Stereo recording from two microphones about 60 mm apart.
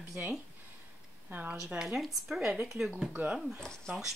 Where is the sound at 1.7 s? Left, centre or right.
Centre.